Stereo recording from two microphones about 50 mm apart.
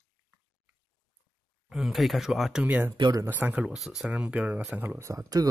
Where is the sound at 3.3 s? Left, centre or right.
Right.